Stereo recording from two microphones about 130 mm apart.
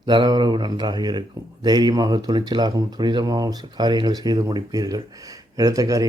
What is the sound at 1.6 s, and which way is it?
Speech, 35° right (ahead or behind).